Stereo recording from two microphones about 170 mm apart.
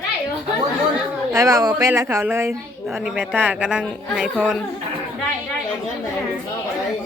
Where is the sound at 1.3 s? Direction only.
20° right (ahead or behind).